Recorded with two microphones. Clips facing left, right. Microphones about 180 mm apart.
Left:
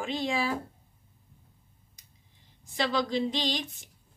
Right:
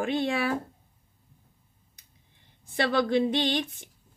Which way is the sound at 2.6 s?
55° right (ahead or behind).